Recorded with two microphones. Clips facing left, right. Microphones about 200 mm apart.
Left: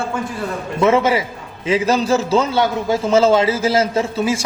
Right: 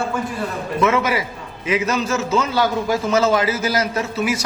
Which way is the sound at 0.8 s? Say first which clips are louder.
Left 4 dB; 30° left (ahead or behind).